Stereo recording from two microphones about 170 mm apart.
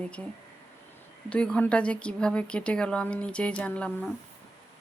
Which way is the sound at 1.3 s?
5° left (ahead or behind).